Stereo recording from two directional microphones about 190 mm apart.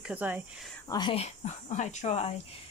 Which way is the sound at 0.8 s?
25° left (ahead or behind).